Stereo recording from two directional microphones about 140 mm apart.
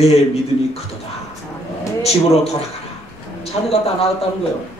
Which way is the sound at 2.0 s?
50° left (ahead or behind).